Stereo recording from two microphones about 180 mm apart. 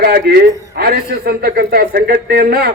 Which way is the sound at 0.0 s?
60° right (ahead or behind).